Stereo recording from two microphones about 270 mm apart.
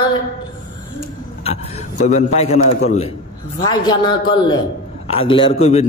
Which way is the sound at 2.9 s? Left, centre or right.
Left.